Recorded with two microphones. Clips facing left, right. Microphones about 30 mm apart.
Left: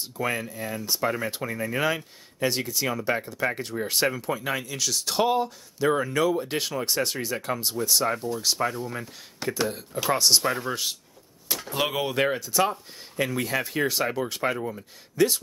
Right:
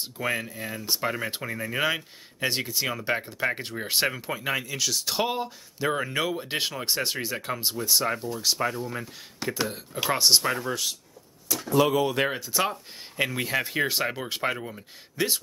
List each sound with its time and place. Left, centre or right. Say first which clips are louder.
0.2 s speech: left 1 dB; centre
0.8 s speech: left 1 dB; centre
1.4 s speech: even; centre
10.6 s speech: even; centre
11.7 s speech: right 6 dB; left
12.0 s speech: even; centre
12.3 s speech: left 3 dB; centre